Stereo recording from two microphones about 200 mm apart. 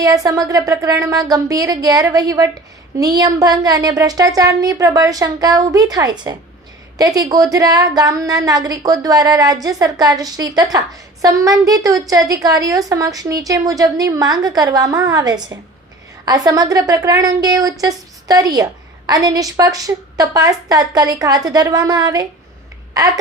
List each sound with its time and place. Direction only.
0.0 s a woman's voice: 15° right (ahead or behind)